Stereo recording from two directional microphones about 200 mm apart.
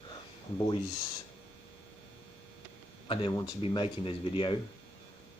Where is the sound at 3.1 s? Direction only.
20° left (ahead or behind).